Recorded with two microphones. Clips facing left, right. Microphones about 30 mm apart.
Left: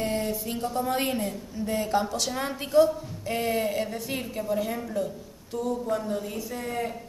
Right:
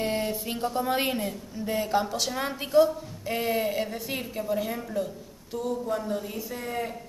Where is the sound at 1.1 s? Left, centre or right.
Centre.